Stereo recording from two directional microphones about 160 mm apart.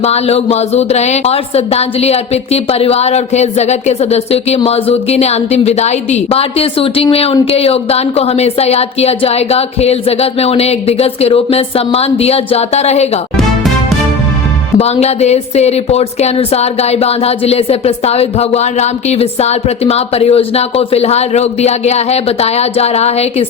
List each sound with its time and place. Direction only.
0.0 s speech: 40° left (ahead or behind)
14.8 s speech: 40° left (ahead or behind)